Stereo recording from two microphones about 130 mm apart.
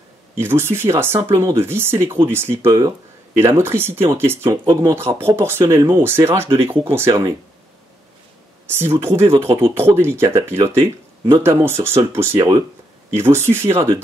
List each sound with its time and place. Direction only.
0.4 s speech: 15° right (ahead or behind)
8.6 s speech: 20° right (ahead or behind)